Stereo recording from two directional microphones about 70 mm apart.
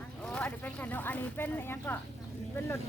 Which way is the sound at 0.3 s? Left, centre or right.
Centre.